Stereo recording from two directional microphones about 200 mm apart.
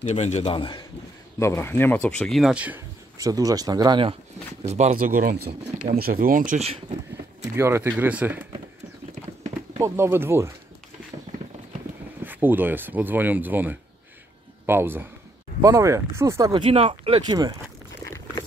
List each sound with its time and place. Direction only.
0.0 s a man's voice: 35° left (ahead or behind)
1.4 s speech: 15° left (ahead or behind); by 4.1 s 20° right (ahead or behind)
4.6 s speech: 35° right (ahead or behind); by 5.5 s 50° right (ahead or behind)
5.5 s speech: 35° right (ahead or behind)
7.5 s speech: 10° right (ahead or behind)
9.8 s speech: 15° right (ahead or behind)
12.2 s speech: 10° right (ahead or behind)